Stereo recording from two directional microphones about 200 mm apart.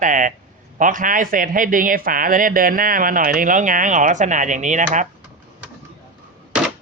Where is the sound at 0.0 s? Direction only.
40° right (ahead or behind).